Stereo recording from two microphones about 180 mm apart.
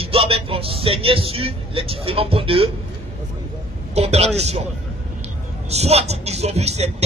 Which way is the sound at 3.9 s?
35° right (ahead or behind).